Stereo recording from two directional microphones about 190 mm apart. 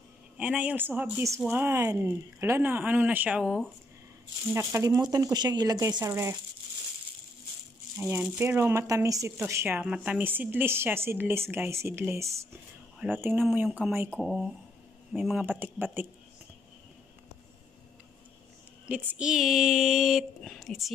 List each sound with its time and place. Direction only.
0.4 s speech: 5° right (ahead or behind)
4.5 s speech: 15° right (ahead or behind)
8.0 s speech: 10° right (ahead or behind)
18.9 s speech: 10° right (ahead or behind)